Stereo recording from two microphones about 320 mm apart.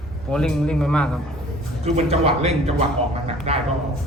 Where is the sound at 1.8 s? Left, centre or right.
Centre.